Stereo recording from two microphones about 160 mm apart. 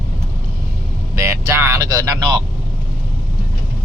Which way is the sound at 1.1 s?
15° right (ahead or behind).